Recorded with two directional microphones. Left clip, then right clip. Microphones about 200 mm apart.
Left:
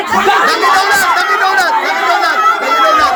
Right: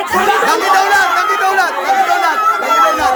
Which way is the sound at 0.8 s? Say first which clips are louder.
Left 1 dB; 20° right (ahead or behind).